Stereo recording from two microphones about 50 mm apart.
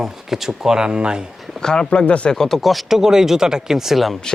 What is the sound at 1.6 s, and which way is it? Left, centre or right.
Speech, centre.